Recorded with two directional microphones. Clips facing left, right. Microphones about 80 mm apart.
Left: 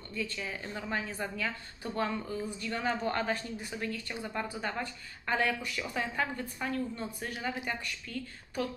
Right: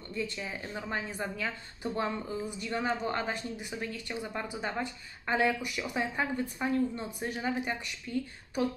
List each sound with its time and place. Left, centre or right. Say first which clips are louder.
0.1 s speech: right 1 dB; right